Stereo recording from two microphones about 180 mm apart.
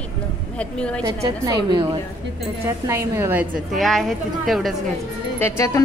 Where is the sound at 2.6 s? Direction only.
15° right (ahead or behind).